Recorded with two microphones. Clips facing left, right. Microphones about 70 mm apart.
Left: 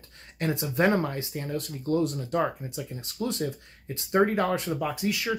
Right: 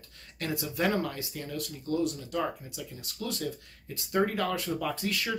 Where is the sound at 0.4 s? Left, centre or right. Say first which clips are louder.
Left 5 dB; left.